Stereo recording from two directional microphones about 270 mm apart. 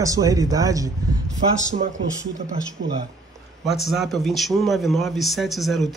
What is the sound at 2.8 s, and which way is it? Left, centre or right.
Speech, right.